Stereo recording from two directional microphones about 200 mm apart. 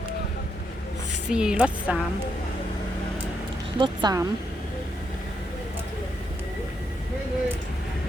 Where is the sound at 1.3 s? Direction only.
5° right (ahead or behind).